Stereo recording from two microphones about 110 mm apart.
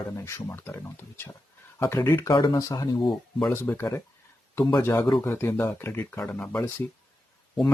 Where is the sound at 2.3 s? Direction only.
45° left (ahead or behind).